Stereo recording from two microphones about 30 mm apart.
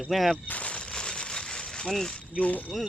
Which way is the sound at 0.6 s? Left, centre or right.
Left.